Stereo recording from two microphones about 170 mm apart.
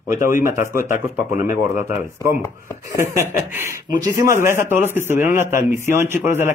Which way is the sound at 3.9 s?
20° right (ahead or behind).